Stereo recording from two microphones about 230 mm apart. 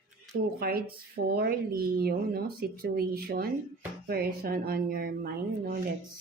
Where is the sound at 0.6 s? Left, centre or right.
Right.